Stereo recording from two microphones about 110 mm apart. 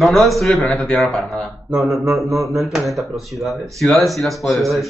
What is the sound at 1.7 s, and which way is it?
Mantra, 30° right (ahead or behind).